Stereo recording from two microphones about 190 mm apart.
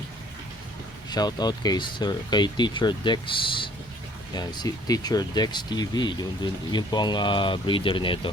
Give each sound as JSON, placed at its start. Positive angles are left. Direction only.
{"t": 1.1, "sound": "speech", "side_deg": 20}